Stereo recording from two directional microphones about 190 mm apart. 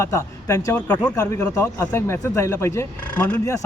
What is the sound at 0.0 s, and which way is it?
A man's voice, 15° left (ahead or behind).